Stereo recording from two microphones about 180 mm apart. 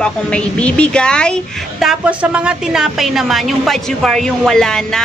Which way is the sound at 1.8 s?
5° right (ahead or behind).